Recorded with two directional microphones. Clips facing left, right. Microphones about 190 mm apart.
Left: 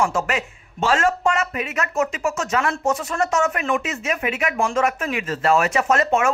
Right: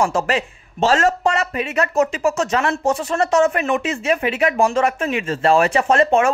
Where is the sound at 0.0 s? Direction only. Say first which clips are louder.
Right 3 dB; 35° right (ahead or behind).